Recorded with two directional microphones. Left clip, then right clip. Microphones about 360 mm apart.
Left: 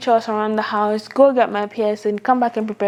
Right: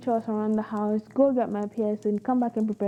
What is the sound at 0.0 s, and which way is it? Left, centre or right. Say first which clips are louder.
A woman's voice: left 10 dB; centre.